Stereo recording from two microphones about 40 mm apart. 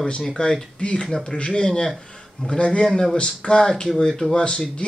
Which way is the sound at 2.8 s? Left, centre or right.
Centre.